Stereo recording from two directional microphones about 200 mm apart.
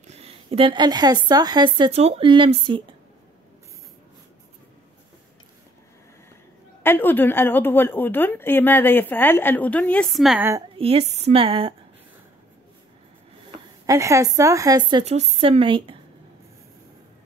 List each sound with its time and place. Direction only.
0.0 s a woman's voice: 30° right (ahead or behind)
6.8 s a woman's voice: 10° left (ahead or behind)
10.8 s a woman's voice: 30° right (ahead or behind)
13.8 s a woman's voice: 15° right (ahead or behind)